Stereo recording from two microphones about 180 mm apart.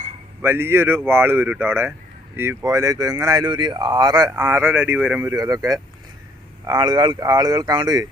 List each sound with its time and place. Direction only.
0.4 s speech: 15° right (ahead or behind)